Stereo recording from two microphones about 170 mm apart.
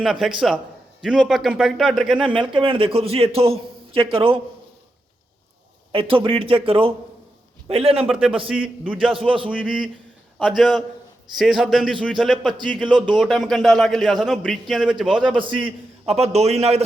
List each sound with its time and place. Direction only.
0.0 s a man's voice: 5° right (ahead or behind)
2.1 s a man's voice: 30° right (ahead or behind)
5.9 s a man's voice: 30° right (ahead or behind)
8.1 s a man's voice: 5° right (ahead or behind)
9.0 s a man's voice: 30° right (ahead or behind)
9.6 s a man's voice: 5° right (ahead or behind)
15.4 s a man's voice: 30° right (ahead or behind)